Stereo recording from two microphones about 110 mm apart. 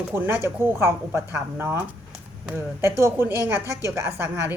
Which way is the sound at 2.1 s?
10° right (ahead or behind).